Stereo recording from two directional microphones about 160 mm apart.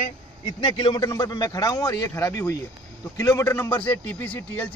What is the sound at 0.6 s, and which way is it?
A man's voice, 30° left (ahead or behind).